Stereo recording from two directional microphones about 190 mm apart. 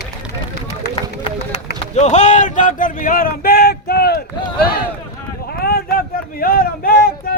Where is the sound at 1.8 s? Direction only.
35° left (ahead or behind); by 4.2 s 55° left (ahead or behind).